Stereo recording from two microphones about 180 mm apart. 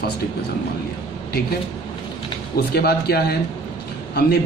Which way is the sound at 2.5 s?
60° left (ahead or behind).